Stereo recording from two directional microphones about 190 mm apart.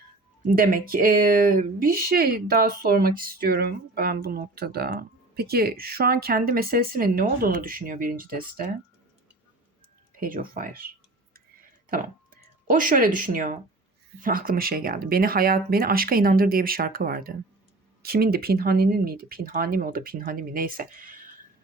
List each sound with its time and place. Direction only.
0.5 s speech: 50° right (ahead or behind)
10.2 s speech: 45° right (ahead or behind)